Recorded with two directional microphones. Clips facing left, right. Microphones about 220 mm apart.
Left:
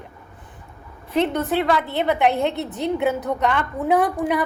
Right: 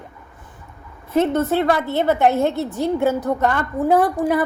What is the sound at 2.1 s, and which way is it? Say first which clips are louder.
Speech: right 3 dB; 15° left (ahead or behind).